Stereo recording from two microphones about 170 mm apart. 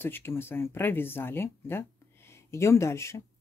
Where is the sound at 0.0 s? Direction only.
15° left (ahead or behind).